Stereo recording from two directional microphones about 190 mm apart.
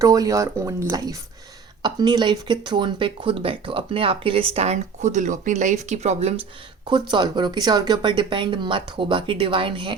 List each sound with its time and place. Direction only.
0.0 s speech: 15° right (ahead or behind); by 6.3 s 35° right (ahead or behind)
7.1 s speech: 25° right (ahead or behind)